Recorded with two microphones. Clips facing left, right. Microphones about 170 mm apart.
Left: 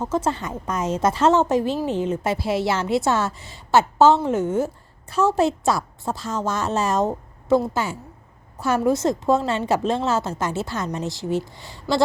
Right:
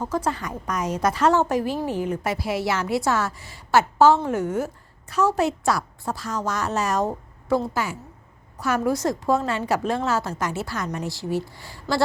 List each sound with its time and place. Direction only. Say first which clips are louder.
0.0 s a woman's voice: left 2 dB; 25° left (ahead or behind)